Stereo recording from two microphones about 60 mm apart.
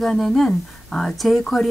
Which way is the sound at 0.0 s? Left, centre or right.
Centre.